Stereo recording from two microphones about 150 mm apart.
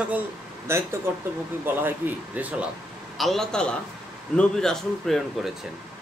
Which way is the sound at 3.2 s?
Centre (ahead or behind).